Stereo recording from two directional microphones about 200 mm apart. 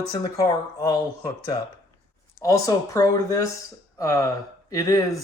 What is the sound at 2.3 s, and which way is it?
Speech, 15° left (ahead or behind).